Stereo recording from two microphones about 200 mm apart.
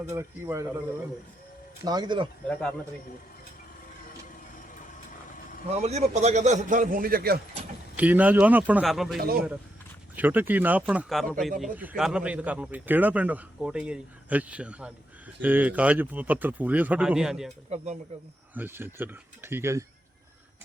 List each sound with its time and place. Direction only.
0.0 s speech: 10° right (ahead or behind)
1.8 s speech: 20° right (ahead or behind)
2.5 s speech: 5° left (ahead or behind)
5.6 s a man's voice: 30° right (ahead or behind); by 7.4 s 50° right (ahead or behind)
7.9 s speech: 5° right (ahead or behind)
9.1 s a man's voice: 50° right (ahead or behind)
10.2 s speech: 10° right (ahead or behind)
17.7 s a man's voice: 35° right (ahead or behind)
18.5 s speech: 10° right (ahead or behind)